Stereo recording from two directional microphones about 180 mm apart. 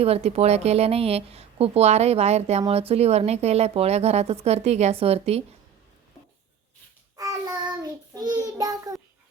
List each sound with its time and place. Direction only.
0.0 s a woman's voice: 35° right (ahead or behind)
7.2 s child singing: 20° right (ahead or behind)